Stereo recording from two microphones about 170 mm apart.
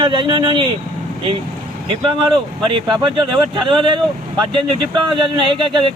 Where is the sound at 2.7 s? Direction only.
30° right (ahead or behind).